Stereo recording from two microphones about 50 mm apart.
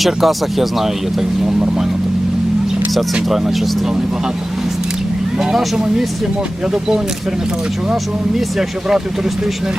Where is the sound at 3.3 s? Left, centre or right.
Centre.